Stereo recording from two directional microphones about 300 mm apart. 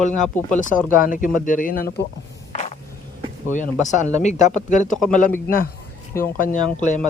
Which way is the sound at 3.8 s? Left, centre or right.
Left.